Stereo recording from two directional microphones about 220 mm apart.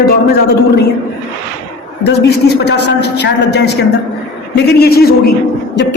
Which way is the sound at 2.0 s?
50° left (ahead or behind).